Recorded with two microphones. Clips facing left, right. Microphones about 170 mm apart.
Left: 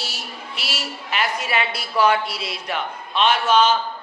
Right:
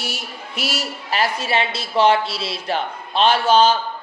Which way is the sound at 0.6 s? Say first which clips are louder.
Right 6 dB; 40° right (ahead or behind).